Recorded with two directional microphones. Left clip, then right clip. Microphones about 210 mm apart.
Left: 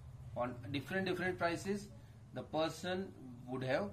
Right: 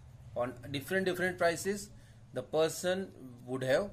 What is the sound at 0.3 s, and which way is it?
A man's voice, 50° right (ahead or behind).